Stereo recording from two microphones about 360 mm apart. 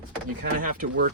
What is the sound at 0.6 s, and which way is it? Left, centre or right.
Speech, right.